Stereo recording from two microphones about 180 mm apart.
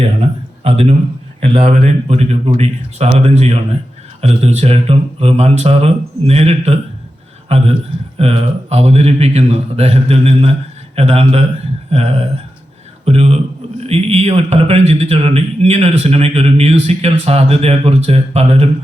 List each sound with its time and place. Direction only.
0.6 s a man's voice: 35° right (ahead or behind)